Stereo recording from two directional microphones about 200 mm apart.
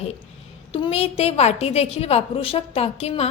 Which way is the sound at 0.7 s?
30° left (ahead or behind).